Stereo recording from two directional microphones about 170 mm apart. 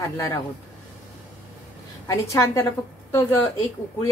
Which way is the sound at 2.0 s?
15° left (ahead or behind).